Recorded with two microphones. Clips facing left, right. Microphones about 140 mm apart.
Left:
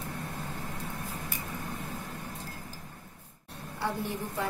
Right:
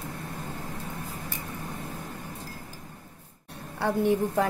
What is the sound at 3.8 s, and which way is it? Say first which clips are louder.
Speech: right 9 dB; 60° right (ahead or behind).